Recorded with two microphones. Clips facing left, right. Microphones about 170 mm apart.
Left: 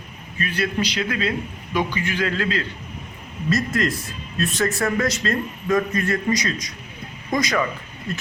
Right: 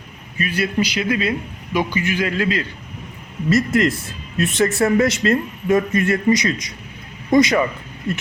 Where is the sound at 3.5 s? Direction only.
25° right (ahead or behind).